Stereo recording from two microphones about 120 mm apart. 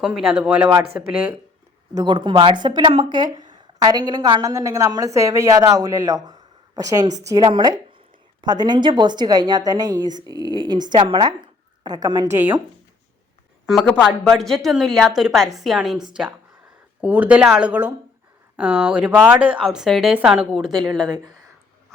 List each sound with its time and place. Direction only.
0.0 s speech: 5° right (ahead or behind)
2.0 s a woman's voice: 40° right (ahead or behind)
12.3 s speech: 15° right (ahead or behind)
13.7 s a woman's voice: 5° left (ahead or behind)
17.0 s a woman's voice: 15° right (ahead or behind); by 21.1 s 5° left (ahead or behind)